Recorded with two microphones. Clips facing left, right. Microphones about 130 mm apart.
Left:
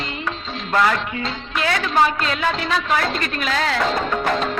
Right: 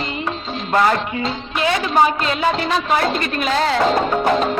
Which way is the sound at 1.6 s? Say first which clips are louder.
Right 2 dB; 20° right (ahead or behind).